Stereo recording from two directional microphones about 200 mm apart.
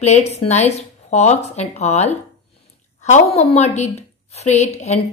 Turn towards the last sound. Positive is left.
turn(degrees=35)  # may be behind; listen again after turning